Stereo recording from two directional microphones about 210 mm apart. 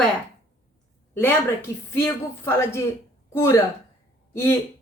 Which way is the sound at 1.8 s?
10° left (ahead or behind).